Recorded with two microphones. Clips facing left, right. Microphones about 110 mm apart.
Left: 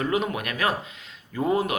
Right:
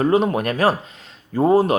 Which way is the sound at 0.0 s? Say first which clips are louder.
Right 8 dB; 35° right (ahead or behind).